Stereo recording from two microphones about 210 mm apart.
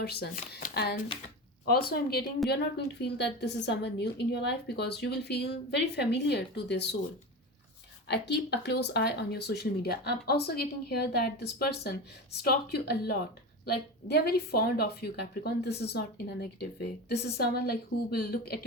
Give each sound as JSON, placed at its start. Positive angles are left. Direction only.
{"t": 0.0, "sound": "speech", "side_deg": 50}
{"t": 8.0, "sound": "speech", "side_deg": 55}